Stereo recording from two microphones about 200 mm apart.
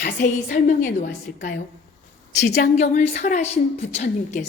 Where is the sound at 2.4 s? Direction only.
55° left (ahead or behind).